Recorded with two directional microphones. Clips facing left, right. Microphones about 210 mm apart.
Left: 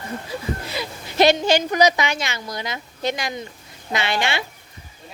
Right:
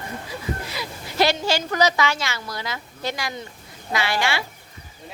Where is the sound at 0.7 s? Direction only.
25° left (ahead or behind).